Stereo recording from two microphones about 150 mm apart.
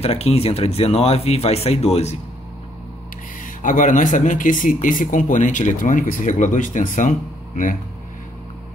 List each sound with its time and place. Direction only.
0.0 s speech: 45° left (ahead or behind)
3.4 s speech: 60° left (ahead or behind)